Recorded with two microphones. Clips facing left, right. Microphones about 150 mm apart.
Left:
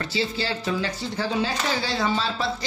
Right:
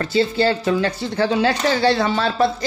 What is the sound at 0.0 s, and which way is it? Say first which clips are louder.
Speech: right 9 dB; 55° right (ahead or behind).